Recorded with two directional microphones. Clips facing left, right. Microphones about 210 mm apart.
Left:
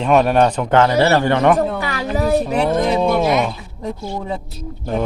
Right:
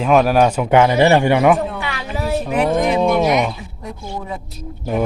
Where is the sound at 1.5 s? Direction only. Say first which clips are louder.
Left 4 dB; 40° left (ahead or behind).